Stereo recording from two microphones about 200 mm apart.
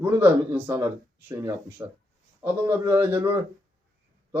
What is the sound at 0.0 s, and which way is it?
A man's voice, 10° right (ahead or behind).